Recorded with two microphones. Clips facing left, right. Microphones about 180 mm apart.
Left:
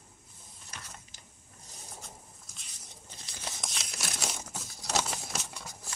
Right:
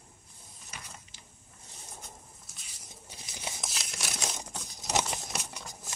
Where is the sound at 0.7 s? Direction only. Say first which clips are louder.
Even; 10° right (ahead or behind).